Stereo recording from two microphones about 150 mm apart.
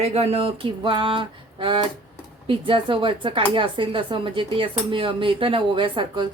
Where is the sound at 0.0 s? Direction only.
45° right (ahead or behind).